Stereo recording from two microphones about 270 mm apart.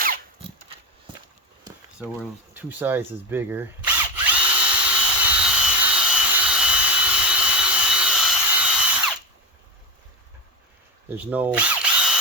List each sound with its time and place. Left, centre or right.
0.0 s a sound: right
2.0 s speech: centre
4.3 s drill: centre
11.1 s speech: centre